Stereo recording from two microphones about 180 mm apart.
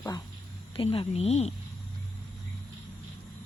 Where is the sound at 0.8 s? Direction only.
30° left (ahead or behind).